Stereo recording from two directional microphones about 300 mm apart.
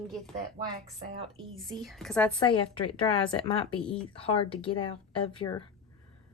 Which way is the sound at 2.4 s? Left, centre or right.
Centre.